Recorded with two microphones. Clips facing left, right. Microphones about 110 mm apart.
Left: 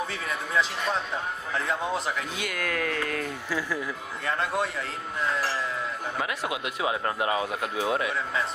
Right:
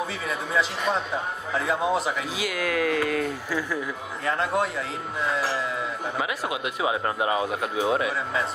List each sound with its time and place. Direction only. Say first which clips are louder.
0.0 s a man's voice: right 2 dB; centre (ahead or behind)